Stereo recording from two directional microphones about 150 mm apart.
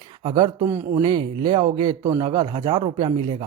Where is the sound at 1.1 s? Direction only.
30° right (ahead or behind).